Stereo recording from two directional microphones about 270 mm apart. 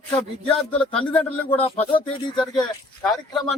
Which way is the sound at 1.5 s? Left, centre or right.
Left.